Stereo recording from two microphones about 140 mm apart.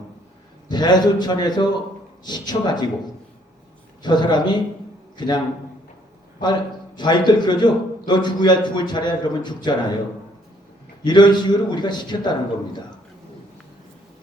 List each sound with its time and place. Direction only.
0.7 s a man's voice: 30° left (ahead or behind)
4.0 s a man's voice: 30° left (ahead or behind)
6.4 s a man's voice: 30° left (ahead or behind)
11.0 s a man's voice: 30° left (ahead or behind)